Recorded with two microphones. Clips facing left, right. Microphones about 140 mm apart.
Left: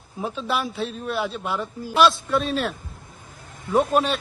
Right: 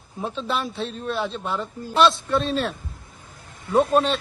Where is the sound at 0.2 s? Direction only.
5° left (ahead or behind).